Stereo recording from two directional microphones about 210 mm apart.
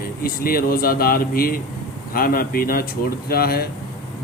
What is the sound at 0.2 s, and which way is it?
A man's voice, 45° left (ahead or behind).